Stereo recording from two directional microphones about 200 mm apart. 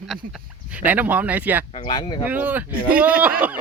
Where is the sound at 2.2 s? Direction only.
10° right (ahead or behind).